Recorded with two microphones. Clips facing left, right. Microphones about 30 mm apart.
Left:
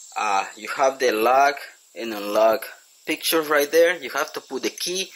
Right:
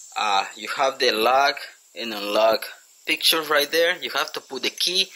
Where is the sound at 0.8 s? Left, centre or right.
Right.